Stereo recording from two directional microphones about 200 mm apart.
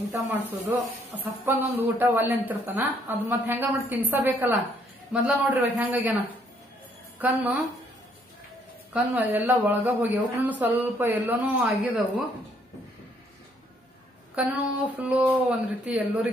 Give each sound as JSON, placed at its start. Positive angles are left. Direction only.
{"t": 0.1, "sound": "speech", "side_deg": -10}
{"t": 7.2, "sound": "speech", "side_deg": -10}
{"t": 9.1, "sound": "speech", "side_deg": -10}
{"t": 14.3, "sound": "speech", "side_deg": -5}